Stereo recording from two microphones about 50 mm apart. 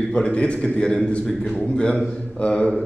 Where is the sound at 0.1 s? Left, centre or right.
Left.